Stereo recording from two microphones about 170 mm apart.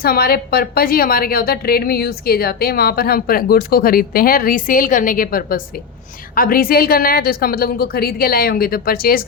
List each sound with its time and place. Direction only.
0.0 s a woman's voice: 60° left (ahead or behind)